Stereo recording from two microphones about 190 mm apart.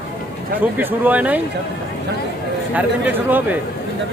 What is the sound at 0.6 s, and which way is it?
Speech, 10° right (ahead or behind).